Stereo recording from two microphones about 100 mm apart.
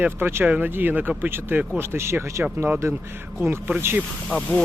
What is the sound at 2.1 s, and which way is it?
Speech, 10° right (ahead or behind).